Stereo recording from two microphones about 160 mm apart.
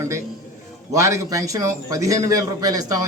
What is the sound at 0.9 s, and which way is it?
A man's voice, 20° right (ahead or behind).